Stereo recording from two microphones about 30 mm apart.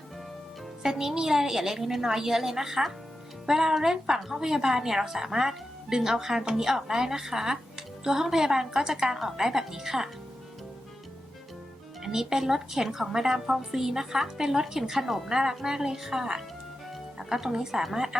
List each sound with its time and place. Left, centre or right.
0.8 s a woman's voice: centre
6.7 s a woman's voice: centre
12.0 s a woman's voice: centre
15.3 s a woman's voice: centre